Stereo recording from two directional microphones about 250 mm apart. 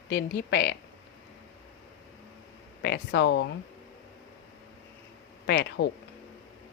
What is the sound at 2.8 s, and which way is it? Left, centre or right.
Speech, left.